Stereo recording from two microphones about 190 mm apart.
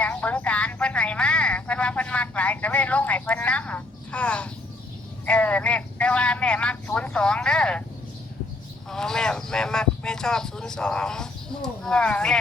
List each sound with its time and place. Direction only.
0.0 s speech: 10° left (ahead or behind)
8.9 s speech: 5° left (ahead or behind)